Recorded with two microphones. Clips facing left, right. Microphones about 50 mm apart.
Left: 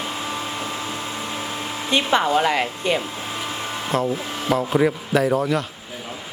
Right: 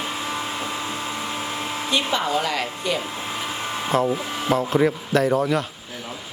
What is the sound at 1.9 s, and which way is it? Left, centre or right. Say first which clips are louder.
Speech: left 5 dB; left.